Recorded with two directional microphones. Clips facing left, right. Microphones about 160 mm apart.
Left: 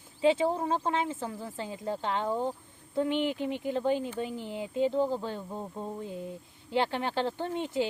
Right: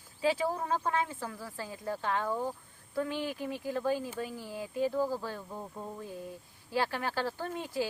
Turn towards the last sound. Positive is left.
turn(degrees=25)  # may be behind; listen again after turning